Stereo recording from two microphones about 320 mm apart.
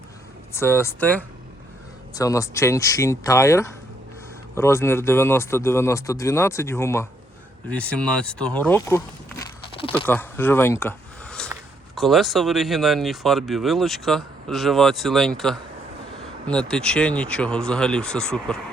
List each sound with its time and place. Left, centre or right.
0.5 s speech: centre